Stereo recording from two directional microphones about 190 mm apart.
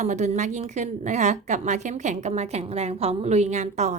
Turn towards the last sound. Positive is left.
turn(degrees=-35)  # may be behind; listen again after turning